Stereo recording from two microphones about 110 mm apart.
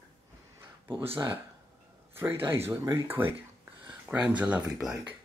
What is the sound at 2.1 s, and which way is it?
A man's voice, 20° right (ahead or behind).